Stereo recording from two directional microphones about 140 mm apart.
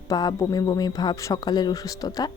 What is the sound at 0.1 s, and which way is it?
A woman's voice, 30° left (ahead or behind).